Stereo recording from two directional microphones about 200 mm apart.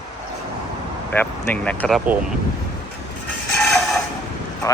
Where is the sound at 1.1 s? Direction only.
5° left (ahead or behind).